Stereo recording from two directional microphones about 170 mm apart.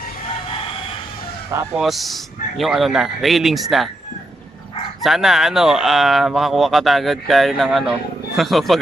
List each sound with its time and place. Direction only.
1.5 s speech: 15° right (ahead or behind)
1.8 s speech: centre (ahead or behind)
5.0 s speech: centre (ahead or behind)